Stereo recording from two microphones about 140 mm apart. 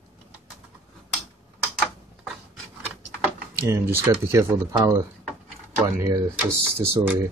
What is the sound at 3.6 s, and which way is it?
Speech, 20° right (ahead or behind).